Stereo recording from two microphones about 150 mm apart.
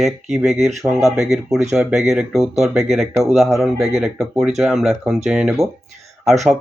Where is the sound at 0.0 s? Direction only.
Centre (ahead or behind).